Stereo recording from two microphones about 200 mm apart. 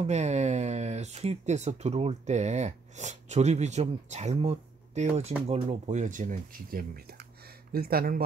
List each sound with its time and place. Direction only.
0.0 s speech: 35° right (ahead or behind)